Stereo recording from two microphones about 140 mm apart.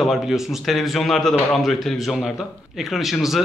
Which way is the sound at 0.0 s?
Centre (ahead or behind).